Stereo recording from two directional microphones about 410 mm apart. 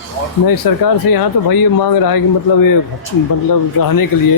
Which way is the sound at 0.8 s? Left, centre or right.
Left.